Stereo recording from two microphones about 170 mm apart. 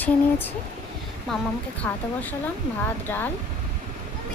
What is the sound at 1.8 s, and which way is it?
Speech, 10° left (ahead or behind).